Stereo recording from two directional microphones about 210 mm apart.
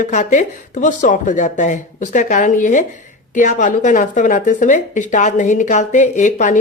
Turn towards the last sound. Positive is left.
turn(degrees=35)  # may be behind; listen again after turning